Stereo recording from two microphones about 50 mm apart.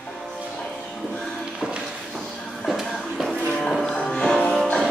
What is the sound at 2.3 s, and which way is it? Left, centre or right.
Music, centre.